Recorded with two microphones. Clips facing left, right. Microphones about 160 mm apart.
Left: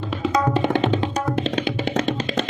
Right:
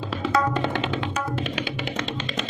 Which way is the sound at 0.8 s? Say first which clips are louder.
Left 5 dB; 35° left (ahead or behind).